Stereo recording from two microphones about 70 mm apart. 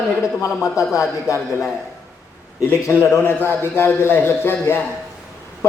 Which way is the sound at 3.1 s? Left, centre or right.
Left.